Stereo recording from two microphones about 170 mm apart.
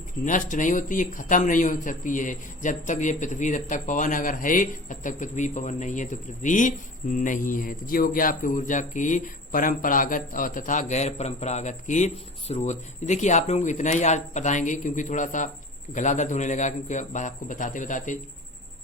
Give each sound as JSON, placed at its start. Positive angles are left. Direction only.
{"t": 0.3, "sound": "a man's voice", "side_deg": 50}